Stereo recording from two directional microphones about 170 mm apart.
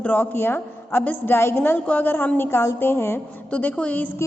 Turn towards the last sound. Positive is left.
turn(degrees=10)  # may be behind; listen again after turning